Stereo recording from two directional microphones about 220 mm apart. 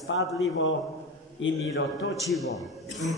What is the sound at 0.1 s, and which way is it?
A man's voice, 60° left (ahead or behind).